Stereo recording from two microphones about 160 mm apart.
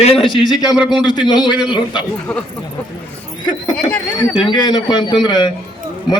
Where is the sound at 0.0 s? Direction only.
35° left (ahead or behind).